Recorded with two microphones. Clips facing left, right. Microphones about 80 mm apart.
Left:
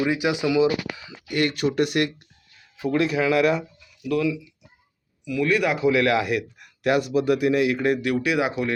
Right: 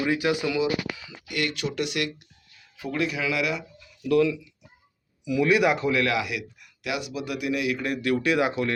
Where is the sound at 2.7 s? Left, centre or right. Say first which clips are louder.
Left 6 dB; left.